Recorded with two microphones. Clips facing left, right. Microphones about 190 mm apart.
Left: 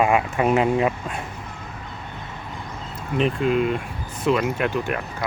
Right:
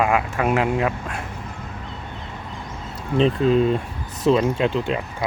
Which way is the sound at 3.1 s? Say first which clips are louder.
Right 3 dB; 30° right (ahead or behind).